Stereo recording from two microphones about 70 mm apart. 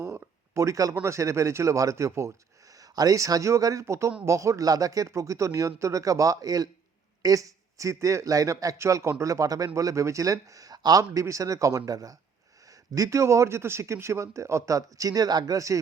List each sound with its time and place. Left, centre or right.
0.0 s a sound: right
1.0 s a man's voice: right
8.8 s a man's voice: right
12.9 s a man's voice: right